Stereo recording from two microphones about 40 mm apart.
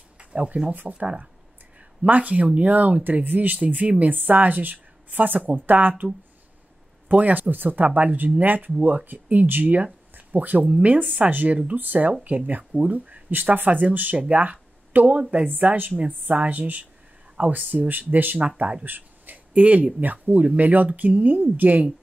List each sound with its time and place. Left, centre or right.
0.2 s a sound: right
0.9 s speech: right
2.0 s speech: right
4.0 s speech: right
7.1 s speech: right
16.3 s speech: right
17.8 s speech: right
18.6 s speech: right
18.9 s speech: right